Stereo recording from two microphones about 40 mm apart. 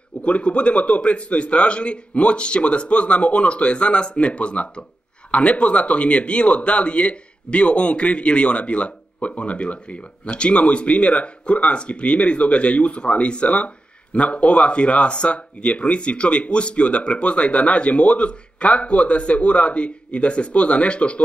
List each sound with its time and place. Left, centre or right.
0.2 s speech: left